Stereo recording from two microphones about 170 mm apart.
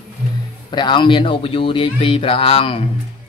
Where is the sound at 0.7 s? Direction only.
25° left (ahead or behind).